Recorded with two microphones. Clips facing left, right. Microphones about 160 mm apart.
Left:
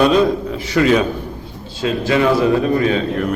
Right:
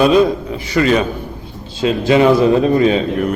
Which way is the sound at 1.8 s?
20° right (ahead or behind).